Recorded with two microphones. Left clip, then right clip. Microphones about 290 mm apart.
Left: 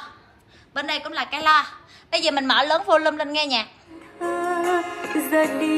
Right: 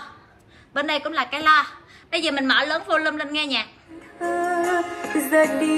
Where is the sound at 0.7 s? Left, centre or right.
Centre.